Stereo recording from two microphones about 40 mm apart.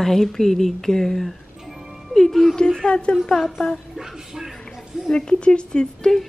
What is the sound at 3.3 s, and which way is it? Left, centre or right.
Speech, centre.